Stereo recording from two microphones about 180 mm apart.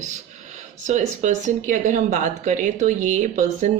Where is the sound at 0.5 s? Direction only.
40° right (ahead or behind).